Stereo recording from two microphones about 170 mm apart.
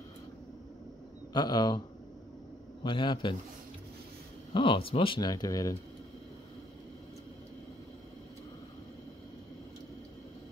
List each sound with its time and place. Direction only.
1.3 s speech: 25° left (ahead or behind)
2.8 s speech: 30° left (ahead or behind)
4.6 s speech: 30° left (ahead or behind)